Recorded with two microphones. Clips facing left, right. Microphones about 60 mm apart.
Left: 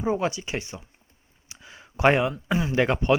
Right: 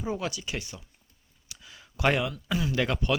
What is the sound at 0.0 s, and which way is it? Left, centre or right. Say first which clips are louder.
Speech: left 7 dB; left.